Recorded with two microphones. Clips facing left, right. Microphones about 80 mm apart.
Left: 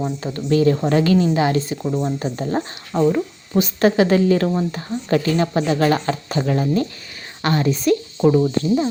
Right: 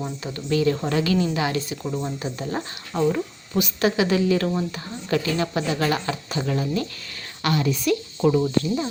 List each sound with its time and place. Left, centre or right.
0.2 s speech: left
1.8 s speech: centre
2.1 s speech: left
2.9 s speech: centre
3.5 s speech: left
4.4 s speech: left